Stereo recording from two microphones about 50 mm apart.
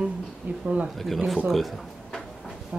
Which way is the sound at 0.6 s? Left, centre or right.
Right.